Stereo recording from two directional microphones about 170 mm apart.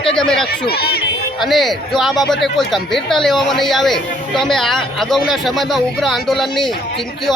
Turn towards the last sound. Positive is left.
turn(degrees=0)  # may be behind; listen again after turning